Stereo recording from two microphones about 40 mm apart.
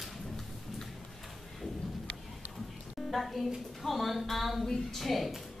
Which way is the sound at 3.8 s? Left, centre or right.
Centre.